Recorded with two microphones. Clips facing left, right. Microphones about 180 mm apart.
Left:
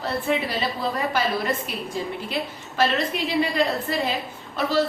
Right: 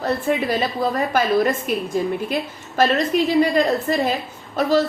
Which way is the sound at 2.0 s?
50° right (ahead or behind).